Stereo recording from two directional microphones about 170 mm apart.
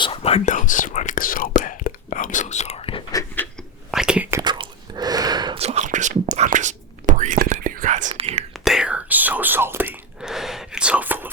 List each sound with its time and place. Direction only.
0.0 s whispering: 35° left (ahead or behind)
3.1 s a sound: 20° left (ahead or behind)
3.9 s whispering: 5° right (ahead or behind)
4.3 s whispering: 20° right (ahead or behind)
5.5 s whispering: 40° right (ahead or behind)
8.1 s whispering: 30° right (ahead or behind)
8.6 s whispering: 5° right (ahead or behind)